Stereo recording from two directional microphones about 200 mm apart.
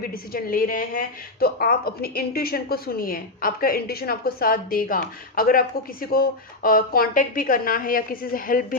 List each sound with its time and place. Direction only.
0.0 s a woman's voice: 45° left (ahead or behind)